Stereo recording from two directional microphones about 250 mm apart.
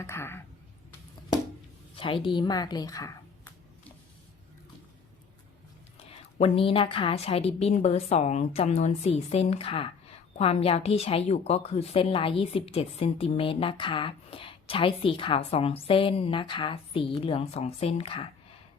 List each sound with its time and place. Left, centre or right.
0.0 s speech: centre
2.2 s a woman's voice: centre
6.4 s a woman's voice: left